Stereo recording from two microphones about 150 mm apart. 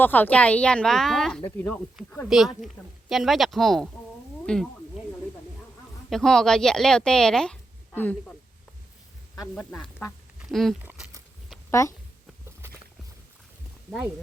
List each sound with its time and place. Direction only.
0.0 s speech: 10° left (ahead or behind)
2.3 s speech: centre (ahead or behind)
6.1 s speech: centre (ahead or behind)
10.5 s speech: centre (ahead or behind)
11.7 s speech: 20° left (ahead or behind)